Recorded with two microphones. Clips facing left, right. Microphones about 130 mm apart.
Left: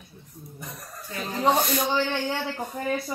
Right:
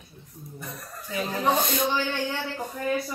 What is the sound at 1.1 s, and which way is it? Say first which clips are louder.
Speech: left 1 dB; 20° right (ahead or behind).